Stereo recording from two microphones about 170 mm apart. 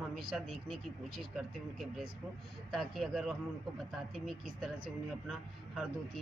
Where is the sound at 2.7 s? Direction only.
Centre (ahead or behind).